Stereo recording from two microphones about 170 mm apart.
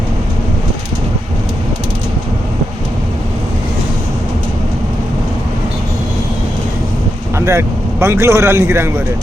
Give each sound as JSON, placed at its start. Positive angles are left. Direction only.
{"t": 7.3, "sound": "a man's voice", "side_deg": -15}